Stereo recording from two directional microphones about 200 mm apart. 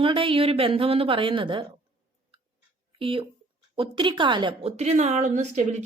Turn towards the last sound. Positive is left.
turn(degrees=-35)  # may be behind; listen again after turning